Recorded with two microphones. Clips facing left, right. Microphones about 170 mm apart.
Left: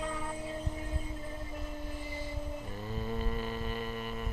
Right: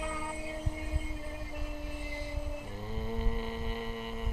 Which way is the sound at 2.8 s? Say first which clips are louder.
Left 1 dB; 15° right (ahead or behind).